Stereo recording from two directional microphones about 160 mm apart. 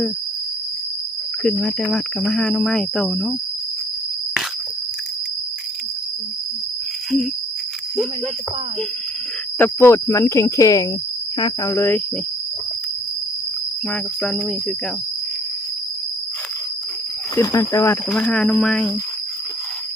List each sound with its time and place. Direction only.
1.5 s speech: 5° left (ahead or behind)
9.6 s speech: 15° left (ahead or behind)
11.7 s speech: 15° left (ahead or behind)
13.9 s speech: 5° left (ahead or behind)
17.3 s speech: 20° left (ahead or behind)
18.1 s speech: 5° left (ahead or behind)